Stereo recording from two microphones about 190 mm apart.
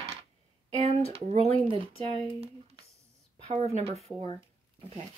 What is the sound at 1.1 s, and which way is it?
A woman's voice, 35° right (ahead or behind).